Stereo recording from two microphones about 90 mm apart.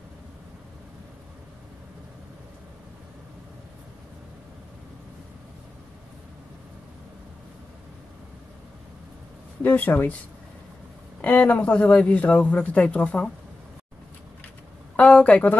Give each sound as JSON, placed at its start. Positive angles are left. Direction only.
{"t": 9.6, "sound": "speech", "side_deg": 20}
{"t": 11.1, "sound": "speech", "side_deg": 20}
{"t": 15.0, "sound": "a woman's voice", "side_deg": 15}